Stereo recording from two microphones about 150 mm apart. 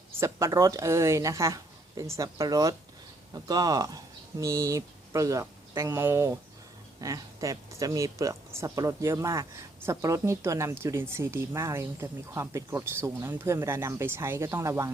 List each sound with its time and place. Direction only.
0.1 s speech: 20° right (ahead or behind)